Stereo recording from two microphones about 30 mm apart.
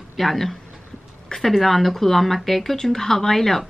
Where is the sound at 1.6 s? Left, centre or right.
Centre.